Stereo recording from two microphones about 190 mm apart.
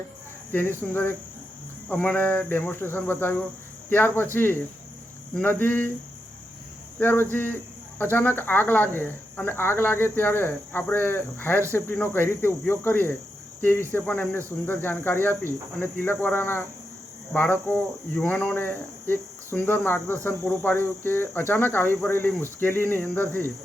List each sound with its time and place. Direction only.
0.5 s speech: 10° left (ahead or behind)
1.9 s speech: 10° left (ahead or behind)
5.3 s speech: 10° left (ahead or behind)
7.0 s speech: 10° left (ahead or behind)